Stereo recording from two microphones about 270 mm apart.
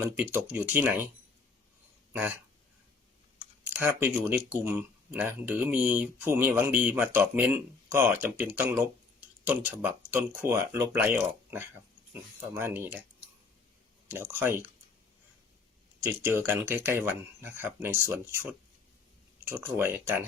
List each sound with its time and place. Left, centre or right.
0.2 s speech: centre
3.7 s speech: centre
14.1 s speech: centre
16.0 s speech: centre
19.5 s speech: centre